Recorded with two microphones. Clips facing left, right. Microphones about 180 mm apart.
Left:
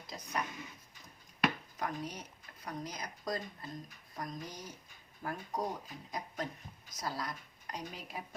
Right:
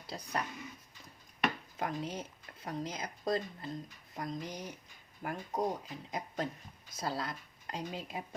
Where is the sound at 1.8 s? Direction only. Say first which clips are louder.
Right 3 dB; 25° right (ahead or behind).